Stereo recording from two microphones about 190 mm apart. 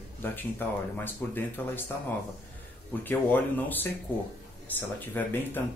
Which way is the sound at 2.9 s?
10° left (ahead or behind).